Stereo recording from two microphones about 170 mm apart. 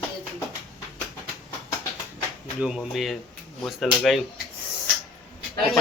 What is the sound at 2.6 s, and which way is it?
Speech, 5° right (ahead or behind).